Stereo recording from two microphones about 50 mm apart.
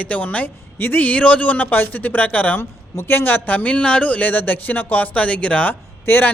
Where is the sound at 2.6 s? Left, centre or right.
Left.